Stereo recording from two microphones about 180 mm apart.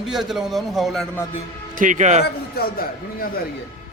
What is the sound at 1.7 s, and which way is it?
Speech, 45° right (ahead or behind).